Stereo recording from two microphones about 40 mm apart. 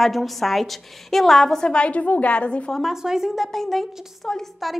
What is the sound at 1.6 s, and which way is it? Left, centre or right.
Speech, left.